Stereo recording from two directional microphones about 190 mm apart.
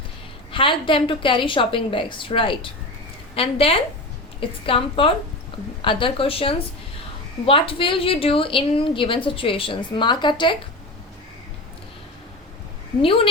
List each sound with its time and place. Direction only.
0.5 s a woman's voice: 25° left (ahead or behind)
13.0 s a woman's voice: 30° left (ahead or behind)